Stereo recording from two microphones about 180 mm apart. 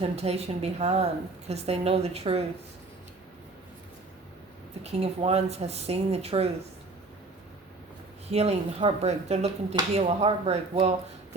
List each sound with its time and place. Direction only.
0.0 s speech: 35° right (ahead or behind)
4.8 s speech: 35° right (ahead or behind)
8.3 s speech: 35° right (ahead or behind)